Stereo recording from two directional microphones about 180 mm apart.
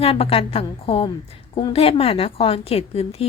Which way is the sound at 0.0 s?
30° left (ahead or behind).